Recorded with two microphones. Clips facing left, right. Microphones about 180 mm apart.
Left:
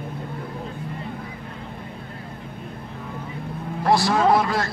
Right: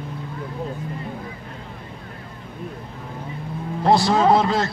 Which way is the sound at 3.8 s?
20° right (ahead or behind).